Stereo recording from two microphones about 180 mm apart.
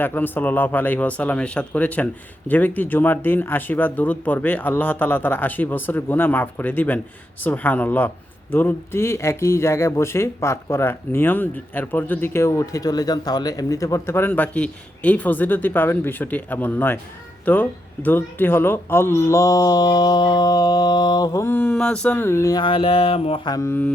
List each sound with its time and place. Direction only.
0.0 s speech: 10° left (ahead or behind)